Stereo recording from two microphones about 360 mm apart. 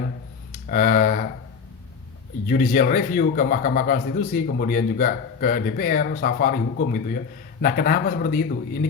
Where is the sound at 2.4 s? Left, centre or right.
Left.